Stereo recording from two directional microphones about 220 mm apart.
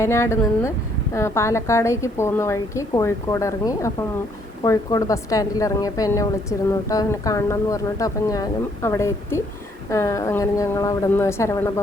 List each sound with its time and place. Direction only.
0.0 s a woman's voice: 10° left (ahead or behind)